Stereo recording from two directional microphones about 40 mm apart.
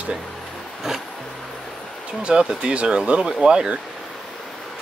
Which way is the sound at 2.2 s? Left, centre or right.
Right.